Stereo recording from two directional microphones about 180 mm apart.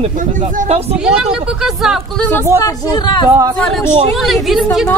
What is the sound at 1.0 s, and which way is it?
Speech, 5° right (ahead or behind).